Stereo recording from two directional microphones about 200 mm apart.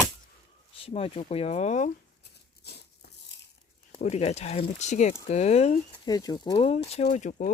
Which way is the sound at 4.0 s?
30° left (ahead or behind).